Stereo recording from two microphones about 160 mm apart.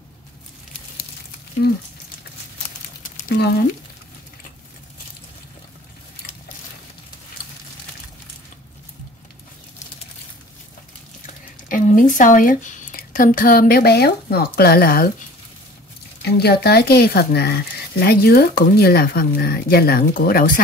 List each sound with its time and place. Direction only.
3.3 s a sound: 90° left
11.7 s speech: 55° left (ahead or behind); by 15.0 s 70° left (ahead or behind)
16.2 s speech: 90° left; by 20.6 s 65° left (ahead or behind)